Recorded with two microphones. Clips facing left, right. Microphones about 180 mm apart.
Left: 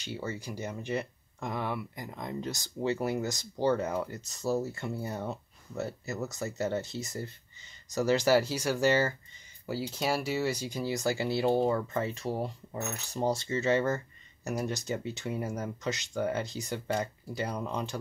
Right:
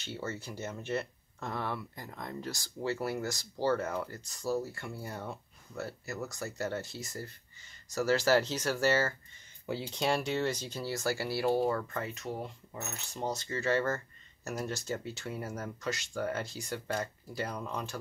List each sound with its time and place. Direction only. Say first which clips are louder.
0.0 s speech: left 2 dB; 15° left (ahead or behind)
9.7 s speech: left 1 dB; 5° left (ahead or behind); by 17.9 s 20° left (ahead or behind)